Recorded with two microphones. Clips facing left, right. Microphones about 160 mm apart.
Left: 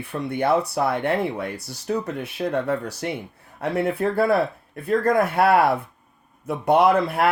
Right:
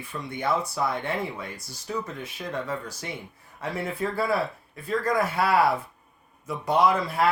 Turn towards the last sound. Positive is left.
turn(degrees=60)  # may be behind; listen again after turning